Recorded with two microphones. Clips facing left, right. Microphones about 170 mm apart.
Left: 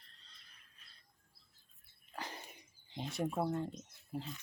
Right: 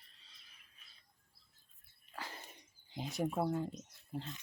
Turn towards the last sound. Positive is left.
turn(degrees=0)  # may be behind; listen again after turning